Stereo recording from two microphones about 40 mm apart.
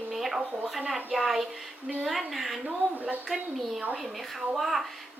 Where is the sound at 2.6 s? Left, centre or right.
Right.